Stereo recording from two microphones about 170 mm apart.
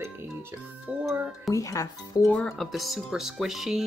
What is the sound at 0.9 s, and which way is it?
Music, 10° right (ahead or behind).